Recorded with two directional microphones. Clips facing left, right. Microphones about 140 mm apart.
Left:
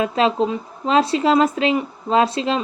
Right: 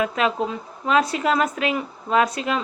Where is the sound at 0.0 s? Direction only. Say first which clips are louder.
Left 4 dB; 25° left (ahead or behind).